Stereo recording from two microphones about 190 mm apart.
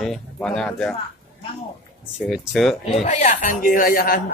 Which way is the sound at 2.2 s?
Centre (ahead or behind).